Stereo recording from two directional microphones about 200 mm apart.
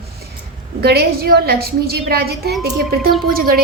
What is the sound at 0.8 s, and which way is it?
A woman's voice, 50° right (ahead or behind).